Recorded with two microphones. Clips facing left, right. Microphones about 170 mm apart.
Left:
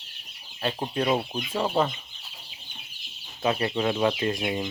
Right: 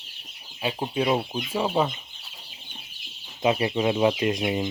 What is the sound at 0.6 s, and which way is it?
Speech, 5° right (ahead or behind).